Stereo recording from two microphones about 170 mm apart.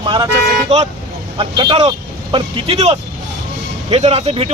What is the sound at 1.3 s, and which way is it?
Speech, 25° right (ahead or behind).